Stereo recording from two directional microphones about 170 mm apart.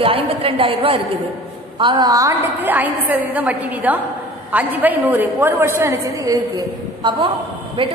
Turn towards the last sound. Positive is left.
turn(degrees=-30)  # may be behind; listen again after turning